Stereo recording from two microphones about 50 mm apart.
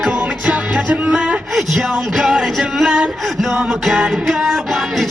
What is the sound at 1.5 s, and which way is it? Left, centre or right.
Speech, centre.